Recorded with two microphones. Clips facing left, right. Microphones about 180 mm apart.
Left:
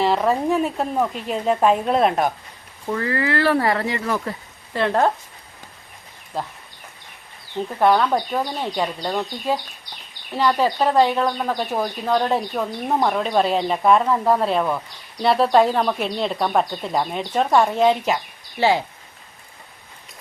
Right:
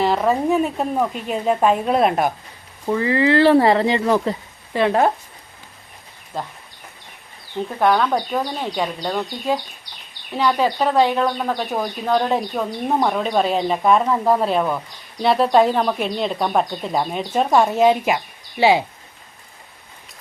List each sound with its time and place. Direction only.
0.0 s speech: centre (ahead or behind)
2.9 s speech: 20° right (ahead or behind)
6.3 s speech: 5° left (ahead or behind)
7.8 s speech: 5° left (ahead or behind); by 18.9 s 15° right (ahead or behind)